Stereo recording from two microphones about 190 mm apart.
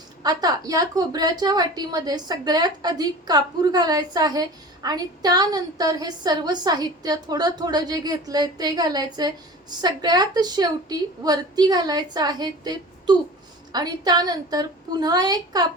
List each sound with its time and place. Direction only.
0.2 s a woman's voice: 20° right (ahead or behind)